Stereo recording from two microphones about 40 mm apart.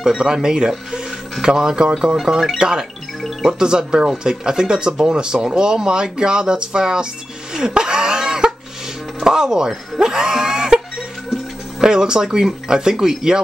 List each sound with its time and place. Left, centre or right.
0.2 s speech: centre
7.5 s cough: centre
9.2 s a sound: centre
11.8 s speech: centre